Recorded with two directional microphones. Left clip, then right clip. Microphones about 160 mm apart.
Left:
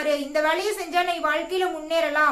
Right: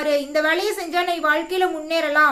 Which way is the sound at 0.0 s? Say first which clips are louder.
Right 3 dB; 30° right (ahead or behind).